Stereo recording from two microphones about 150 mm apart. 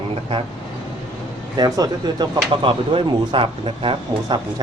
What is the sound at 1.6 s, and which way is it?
A man's voice, 25° right (ahead or behind).